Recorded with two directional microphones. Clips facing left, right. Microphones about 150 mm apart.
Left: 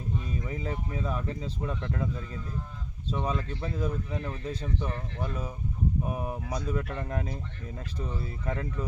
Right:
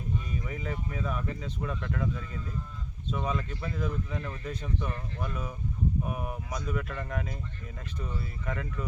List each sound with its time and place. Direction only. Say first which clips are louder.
0.3 s speech: left 2 dB; 30° left (ahead or behind)